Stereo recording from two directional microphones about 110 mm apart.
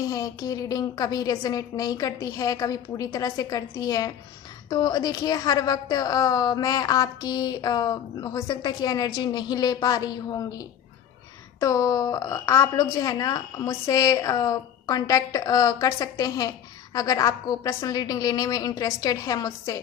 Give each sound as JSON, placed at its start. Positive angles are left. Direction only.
{"t": 0.0, "sound": "a woman's voice", "side_deg": 30}
{"t": 11.6, "sound": "a woman's voice", "side_deg": 30}